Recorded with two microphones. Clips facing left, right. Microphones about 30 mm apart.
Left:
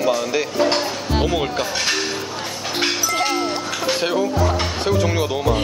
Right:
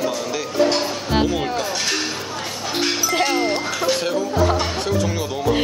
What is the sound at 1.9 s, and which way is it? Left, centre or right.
Music, centre.